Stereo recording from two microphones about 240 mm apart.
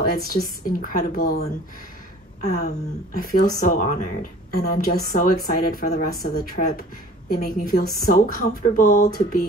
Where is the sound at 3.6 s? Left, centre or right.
Left.